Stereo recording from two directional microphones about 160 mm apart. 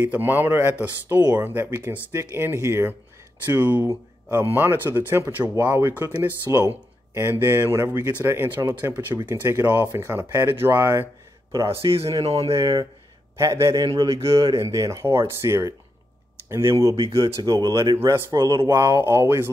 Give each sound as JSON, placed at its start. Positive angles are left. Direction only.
{"t": 0.0, "sound": "speech", "side_deg": -10}
{"t": 11.7, "sound": "a man's voice", "side_deg": -35}
{"t": 13.4, "sound": "speech", "side_deg": -20}
{"t": 13.8, "sound": "a man's voice", "side_deg": -35}
{"t": 14.5, "sound": "speech", "side_deg": -20}